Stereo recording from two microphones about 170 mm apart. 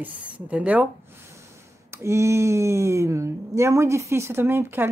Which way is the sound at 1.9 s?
15° right (ahead or behind).